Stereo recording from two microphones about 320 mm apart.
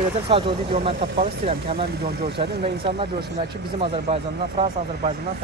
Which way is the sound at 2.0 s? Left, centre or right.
Right.